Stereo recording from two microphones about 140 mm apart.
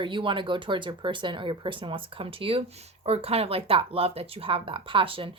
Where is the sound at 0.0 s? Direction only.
35° right (ahead or behind).